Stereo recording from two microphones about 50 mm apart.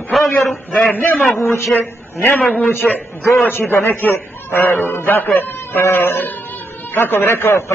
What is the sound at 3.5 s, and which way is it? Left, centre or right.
A man's voice, left.